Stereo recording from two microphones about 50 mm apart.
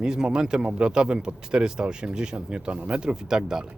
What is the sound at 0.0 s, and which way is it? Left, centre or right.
A woman's voice, centre.